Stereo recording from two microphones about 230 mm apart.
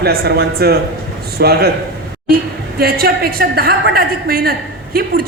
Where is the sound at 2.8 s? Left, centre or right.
Right.